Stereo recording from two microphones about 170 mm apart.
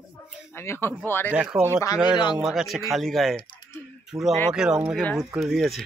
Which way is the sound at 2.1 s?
25° left (ahead or behind).